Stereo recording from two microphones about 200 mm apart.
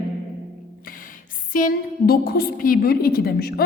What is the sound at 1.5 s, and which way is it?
A woman's voice, 45° left (ahead or behind).